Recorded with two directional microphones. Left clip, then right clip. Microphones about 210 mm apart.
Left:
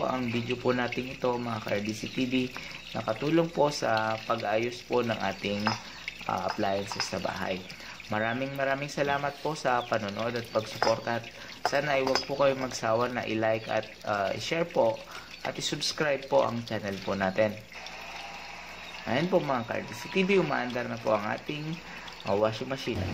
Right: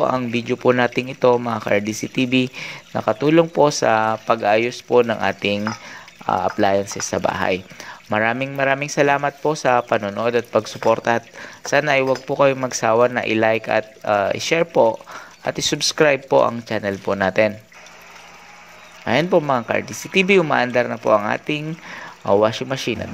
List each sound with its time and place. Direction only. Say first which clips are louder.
0.0 s speech: right 11 dB; 40° right (ahead or behind)
19.0 s speech: right 10 dB; 40° right (ahead or behind)